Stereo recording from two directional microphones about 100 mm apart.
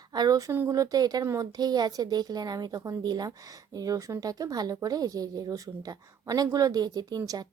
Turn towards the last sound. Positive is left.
turn(degrees=-40)  # may be behind; listen again after turning